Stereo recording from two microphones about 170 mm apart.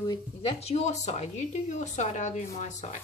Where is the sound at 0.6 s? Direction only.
40° left (ahead or behind).